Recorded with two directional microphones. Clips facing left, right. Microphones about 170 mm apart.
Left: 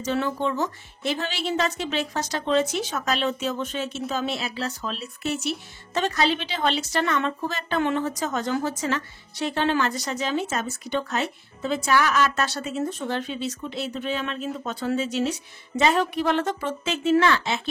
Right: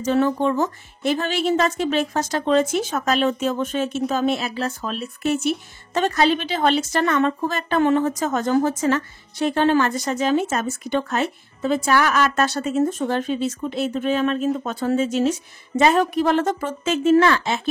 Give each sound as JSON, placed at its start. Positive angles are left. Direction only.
{"t": 0.0, "sound": "speech", "side_deg": -45}